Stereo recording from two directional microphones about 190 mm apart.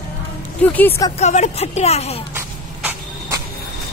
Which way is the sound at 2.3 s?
10° right (ahead or behind).